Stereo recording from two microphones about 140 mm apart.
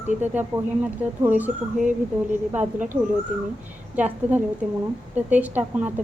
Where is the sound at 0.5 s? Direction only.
15° right (ahead or behind).